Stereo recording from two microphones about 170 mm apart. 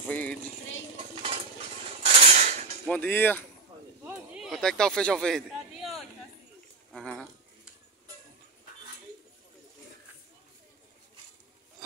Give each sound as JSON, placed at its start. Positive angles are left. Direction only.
{"t": 0.1, "sound": "speech", "side_deg": 10}
{"t": 0.9, "sound": "dishes", "side_deg": -35}
{"t": 2.9, "sound": "speech", "side_deg": 10}
{"t": 4.0, "sound": "a sound", "side_deg": -10}